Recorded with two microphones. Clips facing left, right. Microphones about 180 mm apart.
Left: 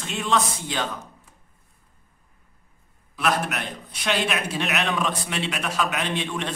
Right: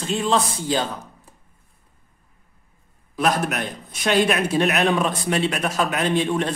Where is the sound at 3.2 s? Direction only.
45° right (ahead or behind).